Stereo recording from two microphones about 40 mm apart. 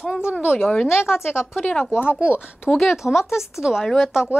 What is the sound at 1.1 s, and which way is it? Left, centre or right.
Speech, centre.